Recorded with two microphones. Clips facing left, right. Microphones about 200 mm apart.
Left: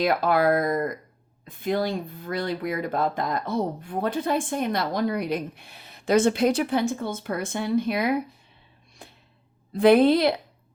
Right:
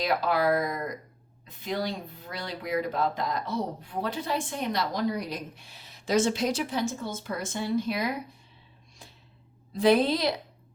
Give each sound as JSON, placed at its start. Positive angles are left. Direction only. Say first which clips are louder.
{"t": 0.0, "sound": "speech", "louder": "left 4 dB", "side_deg": 55}
{"t": 9.0, "sound": "a sound", "louder": "left 5 dB", "side_deg": 60}
{"t": 9.7, "sound": "speech", "louder": "left 6 dB", "side_deg": 60}